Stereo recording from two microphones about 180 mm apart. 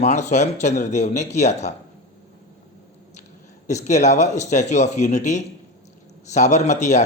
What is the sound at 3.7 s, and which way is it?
A man's voice, 40° left (ahead or behind).